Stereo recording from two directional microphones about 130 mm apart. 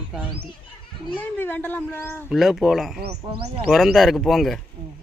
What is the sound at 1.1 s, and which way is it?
Speech, 15° left (ahead or behind).